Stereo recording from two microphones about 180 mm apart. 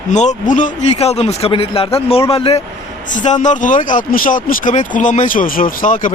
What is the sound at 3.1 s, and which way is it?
A man's voice, 45° left (ahead or behind).